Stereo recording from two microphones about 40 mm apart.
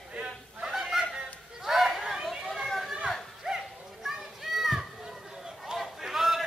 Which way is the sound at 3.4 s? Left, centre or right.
Centre.